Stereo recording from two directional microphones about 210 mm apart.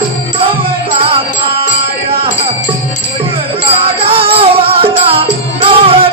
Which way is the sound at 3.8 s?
25° right (ahead or behind).